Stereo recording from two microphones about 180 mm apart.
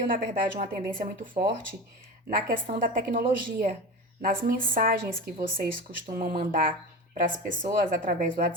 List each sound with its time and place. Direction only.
0.1 s a woman's voice: 50° right (ahead or behind)
2.5 s a woman's voice: 50° right (ahead or behind)